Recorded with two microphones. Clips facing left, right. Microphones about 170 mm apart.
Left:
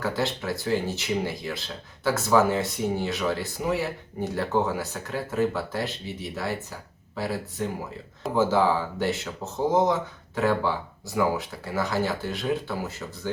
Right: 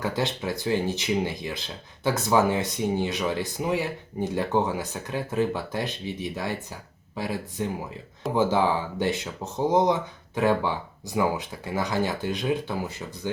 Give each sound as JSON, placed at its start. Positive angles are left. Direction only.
{"t": 0.0, "sound": "speech", "side_deg": -15}
{"t": 8.4, "sound": "speech", "side_deg": -15}